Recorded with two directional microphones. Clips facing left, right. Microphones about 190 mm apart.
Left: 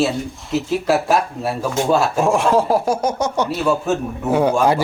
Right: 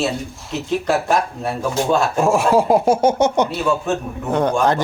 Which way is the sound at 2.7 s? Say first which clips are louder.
Right 3 dB; 25° right (ahead or behind).